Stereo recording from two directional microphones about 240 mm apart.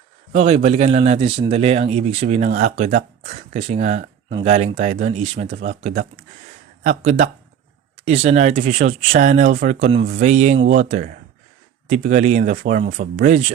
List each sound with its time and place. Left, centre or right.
0.3 s speech: right